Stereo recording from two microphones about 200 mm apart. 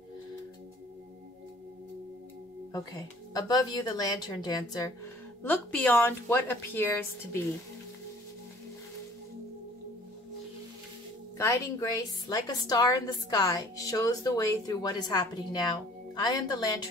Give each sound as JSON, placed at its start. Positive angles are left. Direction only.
{"t": 2.7, "sound": "a woman's voice", "side_deg": 20}
{"t": 11.3, "sound": "a woman's voice", "side_deg": 15}